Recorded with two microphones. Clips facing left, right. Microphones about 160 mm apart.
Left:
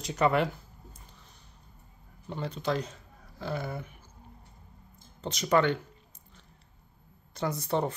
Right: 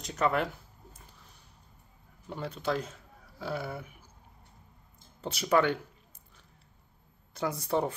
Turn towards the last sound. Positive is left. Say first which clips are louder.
# even
turn(degrees=-10)  # may be behind; listen again after turning